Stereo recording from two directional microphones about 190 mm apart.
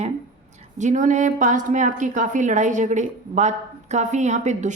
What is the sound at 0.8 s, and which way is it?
A woman's voice, 40° right (ahead or behind).